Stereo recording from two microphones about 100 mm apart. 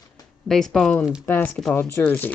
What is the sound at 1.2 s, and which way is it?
Speech, 20° left (ahead or behind).